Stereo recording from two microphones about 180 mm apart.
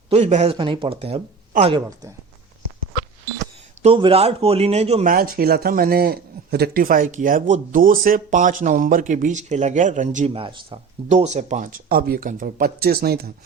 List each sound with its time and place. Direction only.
0.1 s speech: 40° right (ahead or behind)
3.8 s speech: 30° right (ahead or behind)
5.0 s a man's voice: 55° right (ahead or behind)
10.3 s a man's voice: 30° right (ahead or behind); by 13.2 s 60° right (ahead or behind)